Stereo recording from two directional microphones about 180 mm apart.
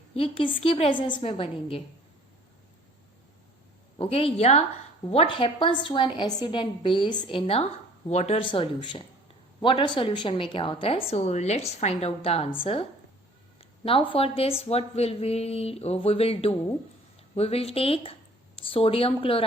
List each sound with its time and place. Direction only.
0.1 s speech: 30° left (ahead or behind)
3.9 s a woman's voice: 30° left (ahead or behind)